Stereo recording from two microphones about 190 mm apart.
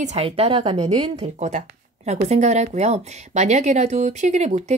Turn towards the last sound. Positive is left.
turn(degrees=-35)  # may be behind; listen again after turning